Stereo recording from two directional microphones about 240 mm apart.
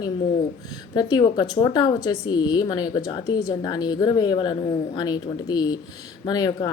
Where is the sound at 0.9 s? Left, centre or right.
Centre.